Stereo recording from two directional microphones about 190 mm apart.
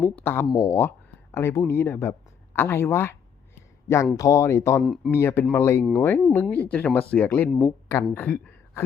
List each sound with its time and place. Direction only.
0.0 s speech: 10° left (ahead or behind)
4.2 s speech: 15° left (ahead or behind)
4.8 s speech: centre (ahead or behind)
5.1 s speech: 15° left (ahead or behind)